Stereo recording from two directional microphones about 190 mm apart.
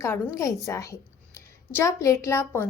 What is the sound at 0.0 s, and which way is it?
A woman's voice, 15° left (ahead or behind).